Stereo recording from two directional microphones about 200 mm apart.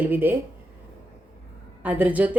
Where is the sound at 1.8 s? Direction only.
10° right (ahead or behind).